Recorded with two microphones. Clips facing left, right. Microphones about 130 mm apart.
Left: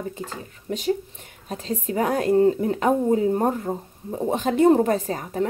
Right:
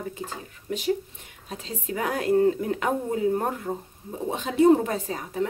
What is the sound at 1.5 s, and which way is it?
A woman's voice, 40° left (ahead or behind).